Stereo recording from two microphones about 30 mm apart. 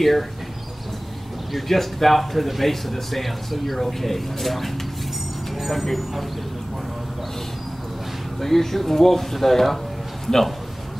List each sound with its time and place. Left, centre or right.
1.5 s speech: centre
8.4 s a man's voice: centre